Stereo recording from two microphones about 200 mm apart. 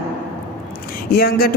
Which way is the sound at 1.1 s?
50° left (ahead or behind).